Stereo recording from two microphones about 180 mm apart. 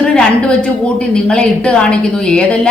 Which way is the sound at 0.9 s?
5° left (ahead or behind).